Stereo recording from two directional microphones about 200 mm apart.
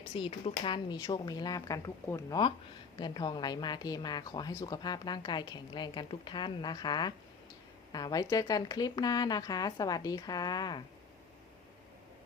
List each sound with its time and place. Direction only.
0.1 s a woman's voice: 25° left (ahead or behind)